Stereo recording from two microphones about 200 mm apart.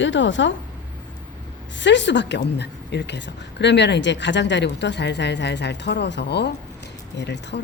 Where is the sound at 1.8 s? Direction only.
65° left (ahead or behind).